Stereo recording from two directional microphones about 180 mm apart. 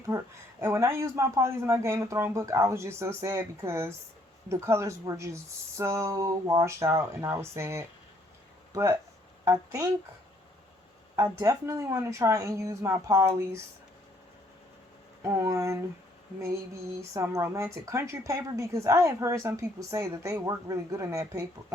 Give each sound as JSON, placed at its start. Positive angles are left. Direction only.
{"t": 0.1, "sound": "a woman's voice", "side_deg": -15}
{"t": 11.2, "sound": "a woman's voice", "side_deg": -15}
{"t": 15.2, "sound": "a woman's voice", "side_deg": -15}
{"t": 17.0, "sound": "a woman's voice", "side_deg": -15}